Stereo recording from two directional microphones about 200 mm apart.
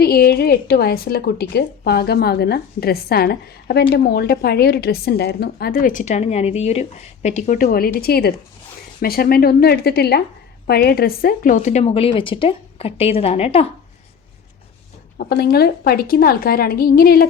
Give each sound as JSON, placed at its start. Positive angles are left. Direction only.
{"t": 0.0, "sound": "a woman's voice", "side_deg": 50}
{"t": 15.2, "sound": "a woman's voice", "side_deg": 50}